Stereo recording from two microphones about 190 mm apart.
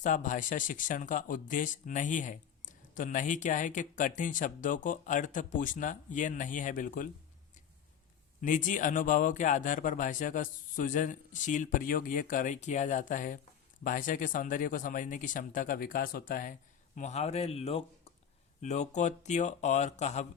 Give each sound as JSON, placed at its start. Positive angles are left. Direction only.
{"t": 0.0, "sound": "speech", "side_deg": 40}
{"t": 8.4, "sound": "speech", "side_deg": 45}